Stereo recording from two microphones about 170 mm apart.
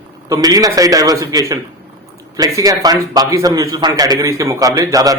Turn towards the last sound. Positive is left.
turn(degrees=-20)  # may be behind; listen again after turning